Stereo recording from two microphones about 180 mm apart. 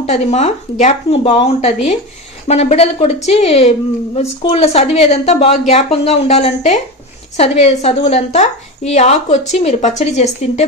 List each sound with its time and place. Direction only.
0.0 s a woman's voice: 35° left (ahead or behind)